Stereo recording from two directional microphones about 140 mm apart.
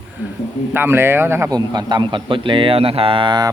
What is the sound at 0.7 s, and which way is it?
Speech, 15° right (ahead or behind).